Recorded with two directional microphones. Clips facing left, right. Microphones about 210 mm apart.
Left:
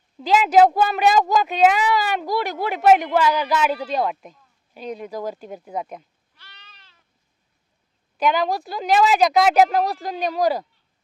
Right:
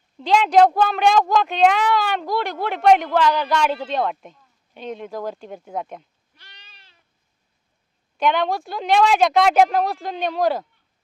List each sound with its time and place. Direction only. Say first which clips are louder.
0.2 s a woman's voice: even; 5° left (ahead or behind)
6.3 s goat: even; 15° right (ahead or behind)
8.2 s a woman's voice: even; centre (ahead or behind)